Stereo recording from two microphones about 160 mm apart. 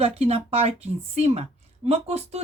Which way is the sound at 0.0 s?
40° right (ahead or behind).